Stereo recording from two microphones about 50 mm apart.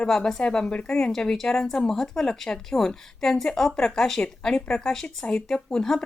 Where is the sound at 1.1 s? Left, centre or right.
Centre.